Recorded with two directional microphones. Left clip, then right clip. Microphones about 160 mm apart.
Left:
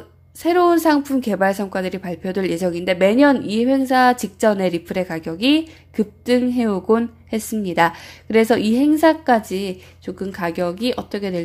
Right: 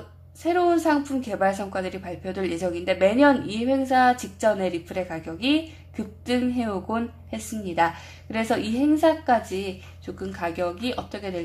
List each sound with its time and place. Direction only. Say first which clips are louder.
0.4 s a woman's voice: left 6 dB; 40° left (ahead or behind)